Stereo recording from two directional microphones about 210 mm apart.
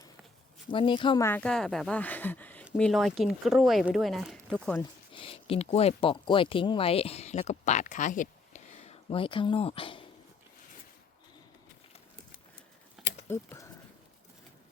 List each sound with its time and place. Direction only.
0.7 s speech: 25° left (ahead or behind)
1.2 s speech: 10° left (ahead or behind)
5.1 s speech: 25° left (ahead or behind)
13.2 s speech: 10° left (ahead or behind)